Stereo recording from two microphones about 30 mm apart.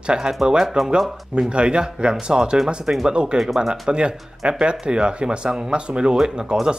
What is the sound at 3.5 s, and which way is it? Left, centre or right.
Speech, centre.